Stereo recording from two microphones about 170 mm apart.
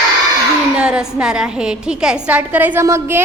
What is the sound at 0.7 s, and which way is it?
A woman's voice, 5° right (ahead or behind).